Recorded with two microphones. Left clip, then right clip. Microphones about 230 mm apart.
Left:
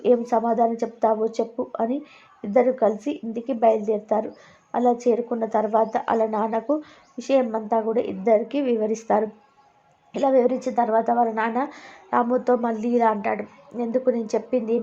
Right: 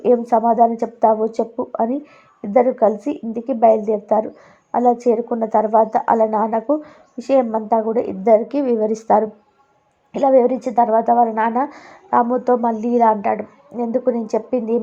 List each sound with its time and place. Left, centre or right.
0.0 s a woman's voice: centre
8.4 s a woman's voice: centre
10.1 s a woman's voice: centre